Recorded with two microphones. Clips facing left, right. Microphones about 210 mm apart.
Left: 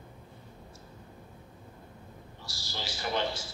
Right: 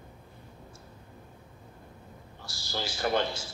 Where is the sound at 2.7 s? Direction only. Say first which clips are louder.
Right 5 dB; 50° right (ahead or behind).